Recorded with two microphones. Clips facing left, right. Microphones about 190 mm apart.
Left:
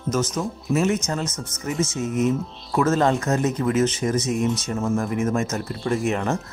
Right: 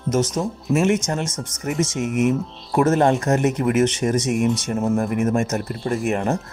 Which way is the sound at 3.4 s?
70° right (ahead or behind).